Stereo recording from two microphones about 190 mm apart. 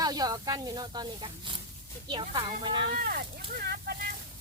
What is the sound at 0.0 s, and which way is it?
Speech, 20° right (ahead or behind).